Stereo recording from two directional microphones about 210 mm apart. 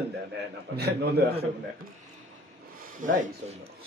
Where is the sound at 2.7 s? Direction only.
40° right (ahead or behind).